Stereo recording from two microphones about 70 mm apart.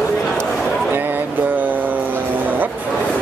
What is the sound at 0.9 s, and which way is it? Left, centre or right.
Music, right.